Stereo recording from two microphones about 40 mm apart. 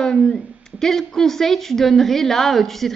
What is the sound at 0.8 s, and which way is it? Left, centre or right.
A woman's voice, centre.